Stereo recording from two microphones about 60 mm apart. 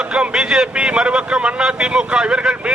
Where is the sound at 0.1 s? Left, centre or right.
Centre.